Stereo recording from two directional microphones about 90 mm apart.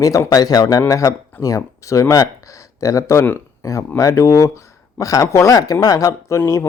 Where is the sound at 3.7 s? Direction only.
35° left (ahead or behind).